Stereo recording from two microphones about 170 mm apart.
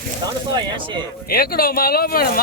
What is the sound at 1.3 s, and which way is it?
Speech, 60° left (ahead or behind).